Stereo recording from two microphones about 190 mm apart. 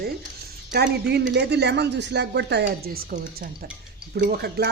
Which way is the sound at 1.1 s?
60° right (ahead or behind).